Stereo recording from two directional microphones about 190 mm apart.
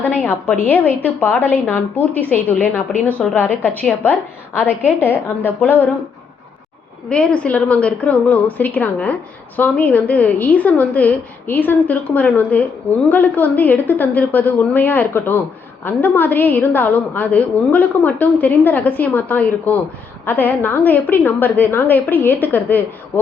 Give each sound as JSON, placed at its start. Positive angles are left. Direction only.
{"t": 0.0, "sound": "a woman's voice", "side_deg": 10}
{"t": 7.1, "sound": "a woman's voice", "side_deg": 5}